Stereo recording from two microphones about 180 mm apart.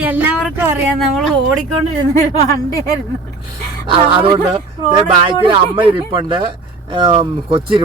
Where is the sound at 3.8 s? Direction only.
30° right (ahead or behind).